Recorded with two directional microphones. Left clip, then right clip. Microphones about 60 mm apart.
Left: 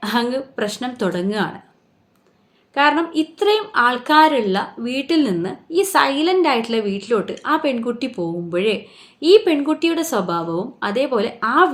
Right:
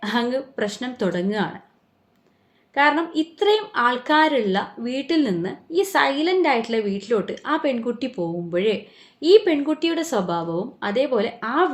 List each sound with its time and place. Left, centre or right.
0.0 s speech: left
2.7 s speech: left